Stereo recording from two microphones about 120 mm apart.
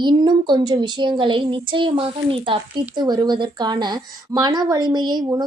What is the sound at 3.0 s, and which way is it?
A woman's voice, 35° right (ahead or behind).